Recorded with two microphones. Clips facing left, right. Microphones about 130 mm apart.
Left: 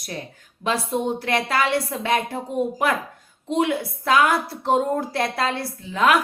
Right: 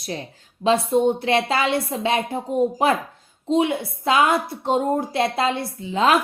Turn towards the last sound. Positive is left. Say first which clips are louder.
# right 1 dB
turn(degrees=-25)  # may be behind; listen again after turning